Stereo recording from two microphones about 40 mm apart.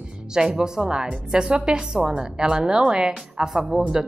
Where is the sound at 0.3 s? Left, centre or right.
Centre.